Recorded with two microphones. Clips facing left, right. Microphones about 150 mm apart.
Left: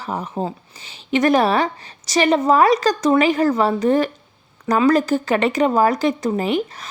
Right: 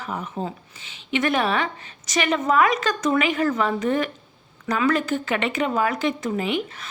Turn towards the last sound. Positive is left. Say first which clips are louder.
# left 5 dB
turn(degrees=40)  # may be behind; listen again after turning